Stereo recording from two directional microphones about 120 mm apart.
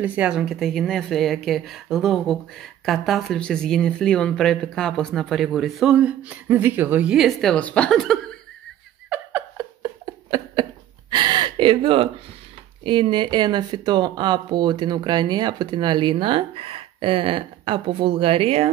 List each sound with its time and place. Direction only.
0.0 s a woman's voice: 10° right (ahead or behind)
7.5 s speech: 10° left (ahead or behind)
10.3 s a sound: 40° right (ahead or behind)
12.8 s speech: 45° right (ahead or behind)